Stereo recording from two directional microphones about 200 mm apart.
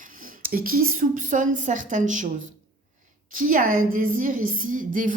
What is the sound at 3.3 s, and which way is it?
A woman's voice, 45° right (ahead or behind).